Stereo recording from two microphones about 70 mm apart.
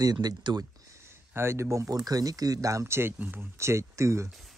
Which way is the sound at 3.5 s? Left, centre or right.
Right.